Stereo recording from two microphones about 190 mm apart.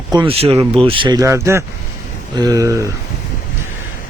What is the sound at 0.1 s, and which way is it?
A man's voice, 25° right (ahead or behind).